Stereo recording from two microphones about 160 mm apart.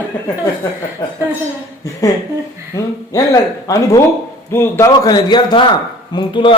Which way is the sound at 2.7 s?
20° left (ahead or behind).